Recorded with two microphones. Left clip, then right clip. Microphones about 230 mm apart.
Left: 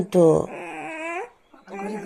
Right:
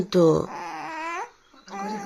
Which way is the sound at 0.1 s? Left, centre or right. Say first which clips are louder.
Left 3 dB; centre.